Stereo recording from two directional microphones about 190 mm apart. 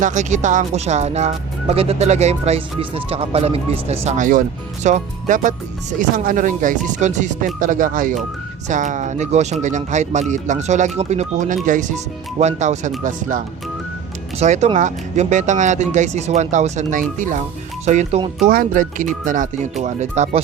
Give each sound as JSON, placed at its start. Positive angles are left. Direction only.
{"t": 0.0, "sound": "speech", "side_deg": -40}
{"t": 14.3, "sound": "speech", "side_deg": -35}